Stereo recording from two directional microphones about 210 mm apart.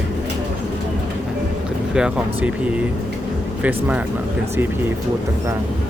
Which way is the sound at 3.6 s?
5° right (ahead or behind).